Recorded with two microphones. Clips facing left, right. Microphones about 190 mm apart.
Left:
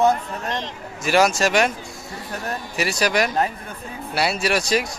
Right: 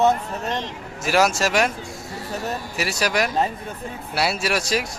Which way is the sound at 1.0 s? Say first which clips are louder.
Left 2 dB; 5° right (ahead or behind).